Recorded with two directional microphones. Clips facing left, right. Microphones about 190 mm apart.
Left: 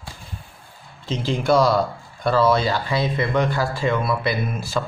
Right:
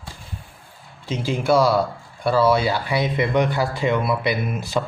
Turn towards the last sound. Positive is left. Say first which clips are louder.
# right 1 dB
turn(degrees=-15)  # may be behind; listen again after turning